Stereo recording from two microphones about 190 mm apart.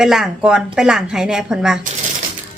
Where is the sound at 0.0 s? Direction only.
5° right (ahead or behind).